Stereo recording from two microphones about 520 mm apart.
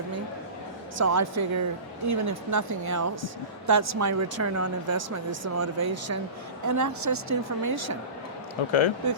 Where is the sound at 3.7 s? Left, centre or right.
Right.